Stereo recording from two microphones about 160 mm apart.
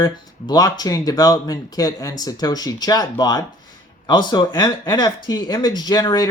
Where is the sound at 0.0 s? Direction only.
25° left (ahead or behind).